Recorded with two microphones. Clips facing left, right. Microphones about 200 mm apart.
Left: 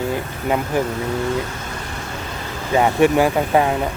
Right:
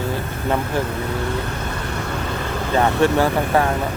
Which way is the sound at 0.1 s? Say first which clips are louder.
Left 1 dB; 15° left (ahead or behind).